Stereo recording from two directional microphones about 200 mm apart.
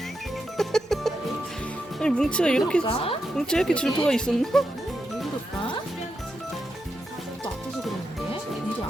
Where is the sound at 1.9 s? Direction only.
5° left (ahead or behind).